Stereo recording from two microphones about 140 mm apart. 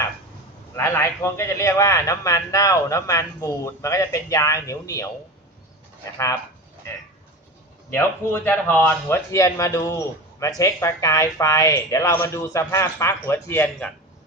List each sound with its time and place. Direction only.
0.8 s a man's voice: 20° left (ahead or behind)
7.9 s a man's voice: 15° left (ahead or behind)